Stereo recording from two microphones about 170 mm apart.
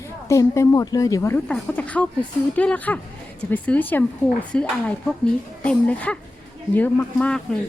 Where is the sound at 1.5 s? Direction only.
5° left (ahead or behind).